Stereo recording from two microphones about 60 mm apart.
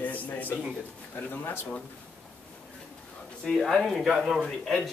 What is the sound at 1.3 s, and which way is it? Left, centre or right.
Speech, left.